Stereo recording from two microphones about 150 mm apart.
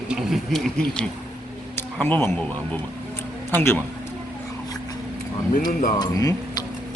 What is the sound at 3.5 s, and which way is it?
Speech, 15° left (ahead or behind).